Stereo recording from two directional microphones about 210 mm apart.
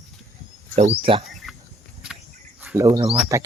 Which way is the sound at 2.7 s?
15° right (ahead or behind).